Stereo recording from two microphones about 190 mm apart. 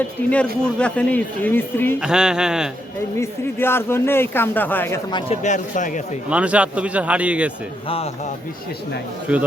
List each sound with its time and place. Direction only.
0.2 s speech: 10° left (ahead or behind)
2.0 s speech: 5° right (ahead or behind)
3.2 s speech: 10° left (ahead or behind)
5.1 s speech: 35° left (ahead or behind)
6.3 s speech: 5° right (ahead or behind)
9.3 s speech: 5° right (ahead or behind)